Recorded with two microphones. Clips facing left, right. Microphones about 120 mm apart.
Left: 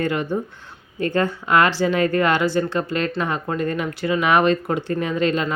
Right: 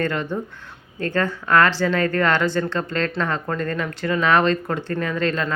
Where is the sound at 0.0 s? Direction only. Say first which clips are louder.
Left 2 dB; 15° left (ahead or behind).